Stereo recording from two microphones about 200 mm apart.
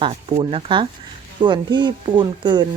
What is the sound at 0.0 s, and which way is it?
Speech, 25° right (ahead or behind).